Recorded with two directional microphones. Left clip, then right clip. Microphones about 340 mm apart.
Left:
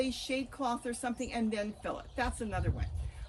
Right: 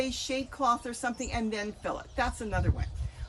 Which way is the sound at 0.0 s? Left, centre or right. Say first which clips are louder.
Right 2 dB; centre.